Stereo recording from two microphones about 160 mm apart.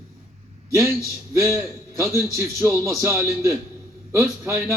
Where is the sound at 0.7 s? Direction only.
20° right (ahead or behind).